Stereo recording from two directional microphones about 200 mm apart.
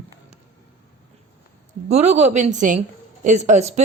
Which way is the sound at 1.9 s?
35° right (ahead or behind).